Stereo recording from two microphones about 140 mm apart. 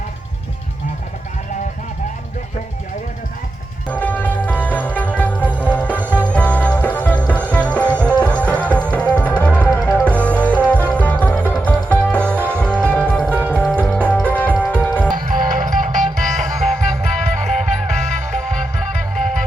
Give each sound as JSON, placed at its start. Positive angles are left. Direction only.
{"t": 3.8, "sound": "music", "side_deg": 10}
{"t": 15.1, "sound": "music", "side_deg": -75}
{"t": 16.4, "sound": "music", "side_deg": 5}
{"t": 17.2, "sound": "music", "side_deg": -55}